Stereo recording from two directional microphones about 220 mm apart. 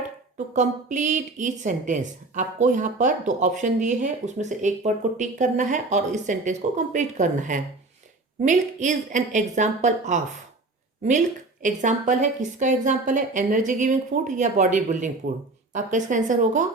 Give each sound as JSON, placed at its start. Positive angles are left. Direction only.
{"t": 0.3, "sound": "speech", "side_deg": -35}
{"t": 11.6, "sound": "speech", "side_deg": -35}